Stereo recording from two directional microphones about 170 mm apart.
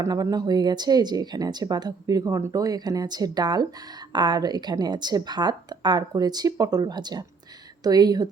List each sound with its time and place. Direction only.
0.0 s speech: 20° right (ahead or behind)